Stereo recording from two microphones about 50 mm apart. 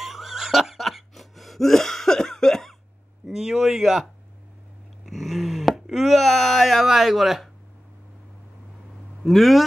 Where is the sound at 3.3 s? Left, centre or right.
Centre.